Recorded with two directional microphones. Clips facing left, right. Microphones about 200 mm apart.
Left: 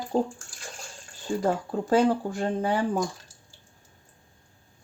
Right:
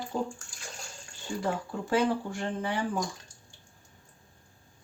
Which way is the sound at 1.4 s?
45° left (ahead or behind).